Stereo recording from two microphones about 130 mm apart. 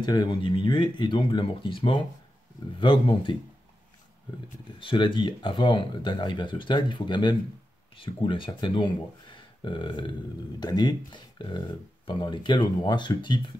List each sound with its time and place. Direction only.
0.0 s speech: 35° left (ahead or behind)
4.7 s speech: 40° left (ahead or behind)